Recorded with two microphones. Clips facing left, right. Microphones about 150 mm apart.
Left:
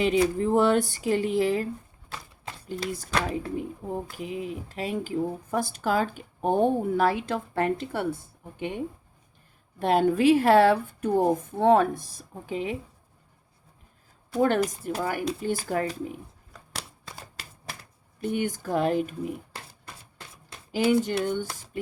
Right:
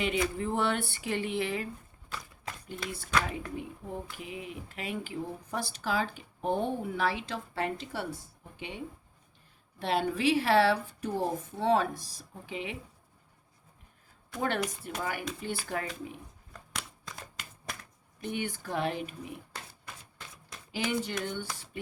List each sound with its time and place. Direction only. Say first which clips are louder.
0.0 s speech: left 8 dB; 40° left (ahead or behind)
14.4 s speech: left 7 dB; 40° left (ahead or behind)
18.2 s speech: left 7 dB; 45° left (ahead or behind)
21.2 s speech: left 8 dB; 45° left (ahead or behind)